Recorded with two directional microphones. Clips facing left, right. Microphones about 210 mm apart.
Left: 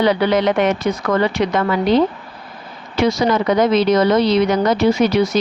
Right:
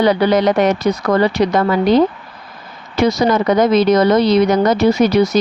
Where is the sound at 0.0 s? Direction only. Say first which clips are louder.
Right 2 dB; 40° right (ahead or behind).